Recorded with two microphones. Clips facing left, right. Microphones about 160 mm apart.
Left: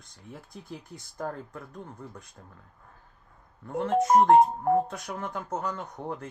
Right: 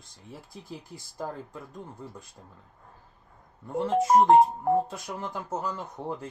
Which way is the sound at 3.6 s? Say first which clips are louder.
Even; 15° right (ahead or behind).